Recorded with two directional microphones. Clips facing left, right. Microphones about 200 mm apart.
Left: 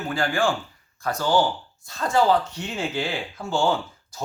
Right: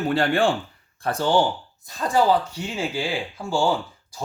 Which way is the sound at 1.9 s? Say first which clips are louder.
Even; 15° right (ahead or behind).